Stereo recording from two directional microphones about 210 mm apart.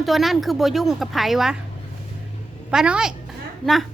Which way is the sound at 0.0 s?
Centre (ahead or behind).